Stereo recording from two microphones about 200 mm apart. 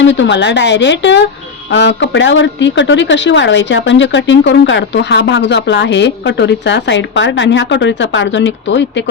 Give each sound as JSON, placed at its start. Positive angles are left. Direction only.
{"t": 0.0, "sound": "speech", "side_deg": 65}